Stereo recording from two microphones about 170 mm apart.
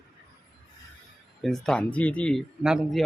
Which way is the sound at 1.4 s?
5° left (ahead or behind).